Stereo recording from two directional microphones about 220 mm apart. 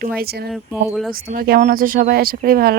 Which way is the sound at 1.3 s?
40° right (ahead or behind).